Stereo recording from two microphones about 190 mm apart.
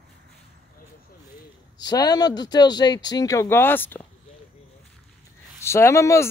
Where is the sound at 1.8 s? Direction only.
20° left (ahead or behind).